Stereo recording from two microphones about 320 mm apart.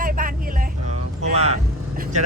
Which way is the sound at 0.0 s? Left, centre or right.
Right.